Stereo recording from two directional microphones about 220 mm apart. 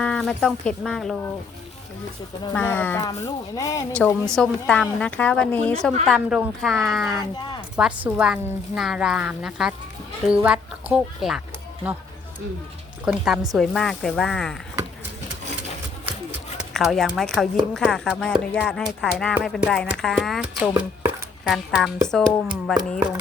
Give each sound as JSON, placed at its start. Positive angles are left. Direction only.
{"t": 0.0, "sound": "speech", "side_deg": 5}
{"t": 2.5, "sound": "a woman's voice", "side_deg": 10}
{"t": 13.1, "sound": "speech", "side_deg": 0}
{"t": 16.7, "sound": "speech", "side_deg": 0}